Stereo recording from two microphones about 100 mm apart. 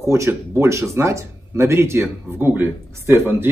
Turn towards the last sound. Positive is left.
turn(degrees=-25)  # may be behind; listen again after turning